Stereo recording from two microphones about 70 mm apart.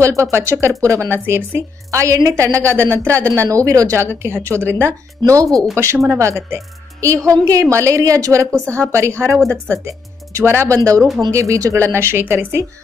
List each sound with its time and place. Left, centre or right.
0.0 s a woman's voice: right
1.1 s speech: right
1.9 s a woman's voice: right
4.0 s speech: right
5.2 s speech: right
6.0 s a woman's voice: right
10.4 s speech: right
10.7 s a woman's voice: right